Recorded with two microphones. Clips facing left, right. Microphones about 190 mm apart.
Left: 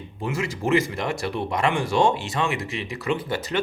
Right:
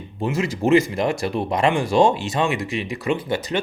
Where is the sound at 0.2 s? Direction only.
20° right (ahead or behind).